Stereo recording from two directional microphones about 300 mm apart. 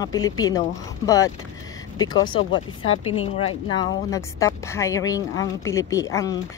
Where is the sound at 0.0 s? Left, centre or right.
Centre.